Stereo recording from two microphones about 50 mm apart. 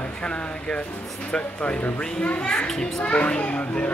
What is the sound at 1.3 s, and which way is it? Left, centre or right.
A child's voice, left.